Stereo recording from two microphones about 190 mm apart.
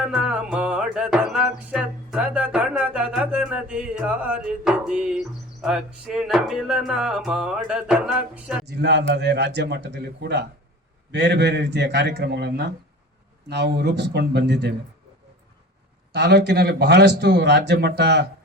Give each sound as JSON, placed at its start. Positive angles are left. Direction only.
{"t": 0.0, "sound": "music", "side_deg": -5}
{"t": 5.6, "sound": "speech", "side_deg": -5}
{"t": 8.6, "sound": "a man's voice", "side_deg": -65}
{"t": 16.1, "sound": "a man's voice", "side_deg": -65}